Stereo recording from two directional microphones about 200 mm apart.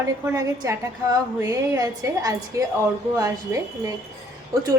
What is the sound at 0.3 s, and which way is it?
A woman's voice, 15° right (ahead or behind).